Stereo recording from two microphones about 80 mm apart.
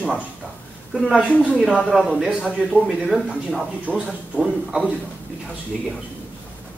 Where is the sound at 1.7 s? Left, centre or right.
Centre.